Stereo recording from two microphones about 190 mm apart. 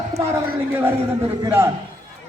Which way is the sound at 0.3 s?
10° right (ahead or behind).